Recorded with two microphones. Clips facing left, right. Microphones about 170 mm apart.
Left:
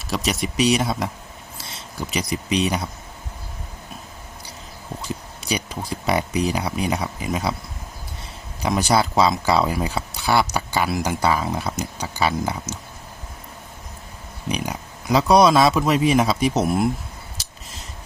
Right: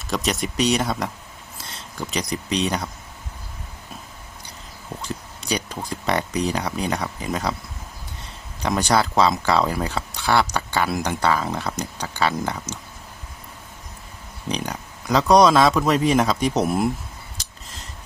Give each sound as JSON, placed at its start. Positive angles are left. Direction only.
{"t": 0.1, "sound": "speech", "side_deg": 0}
{"t": 5.0, "sound": "a sound", "side_deg": 5}
{"t": 5.9, "sound": "speech", "side_deg": 10}
{"t": 8.6, "sound": "speech", "side_deg": 5}
{"t": 14.5, "sound": "speech", "side_deg": 10}